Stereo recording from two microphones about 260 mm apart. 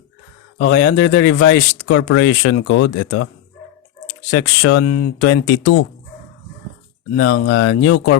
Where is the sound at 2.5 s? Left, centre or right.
Left.